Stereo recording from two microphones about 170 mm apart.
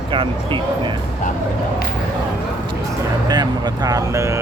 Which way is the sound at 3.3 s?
25° right (ahead or behind).